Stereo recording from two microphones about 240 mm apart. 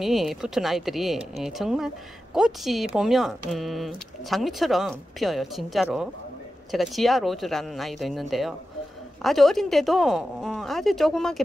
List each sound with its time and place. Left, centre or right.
0.0 s speech: centre